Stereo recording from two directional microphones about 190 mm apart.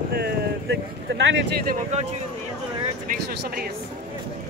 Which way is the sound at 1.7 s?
35° right (ahead or behind).